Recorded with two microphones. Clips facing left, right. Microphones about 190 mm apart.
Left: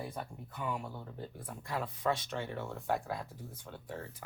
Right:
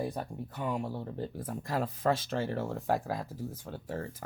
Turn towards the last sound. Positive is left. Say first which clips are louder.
# right 6 dB
turn(degrees=-40)  # may be behind; listen again after turning